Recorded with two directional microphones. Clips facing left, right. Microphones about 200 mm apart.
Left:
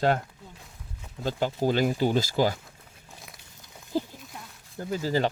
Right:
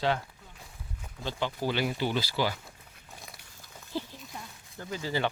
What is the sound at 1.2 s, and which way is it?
Speech, 40° left (ahead or behind).